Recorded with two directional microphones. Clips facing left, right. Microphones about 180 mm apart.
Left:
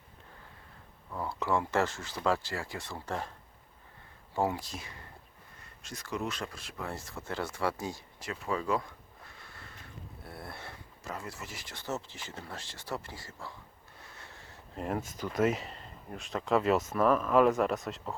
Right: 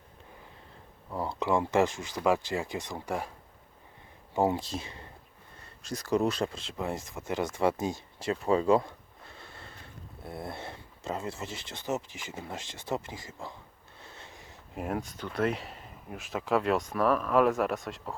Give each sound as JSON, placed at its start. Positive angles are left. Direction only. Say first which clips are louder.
{"t": 1.1, "sound": "speech", "louder": "right 3 dB", "side_deg": -25}
{"t": 4.4, "sound": "speech", "louder": "right 4 dB", "side_deg": -25}
{"t": 5.8, "sound": "speech", "louder": "right 9 dB", "side_deg": -35}
{"t": 9.3, "sound": "sniff", "louder": "right 6 dB", "side_deg": -25}
{"t": 10.2, "sound": "speech", "louder": "right 7 dB", "side_deg": -20}
{"t": 14.0, "sound": "a sound", "louder": "right 3 dB", "side_deg": -25}
{"t": 14.8, "sound": "speech", "louder": "even", "side_deg": 0}